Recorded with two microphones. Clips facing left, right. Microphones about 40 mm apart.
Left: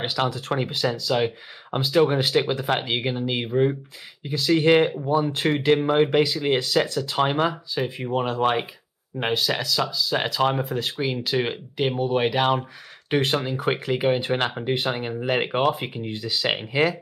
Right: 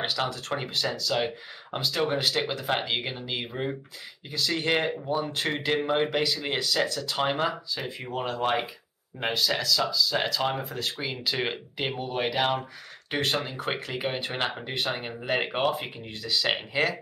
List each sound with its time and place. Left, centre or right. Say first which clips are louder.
0.0 s speech: left 4 dB; centre
5.0 s speech: left 6 dB; left
11.3 s speech: left 6 dB; centre
14.4 s speech: left 4 dB; centre
14.7 s speech: left 6 dB; centre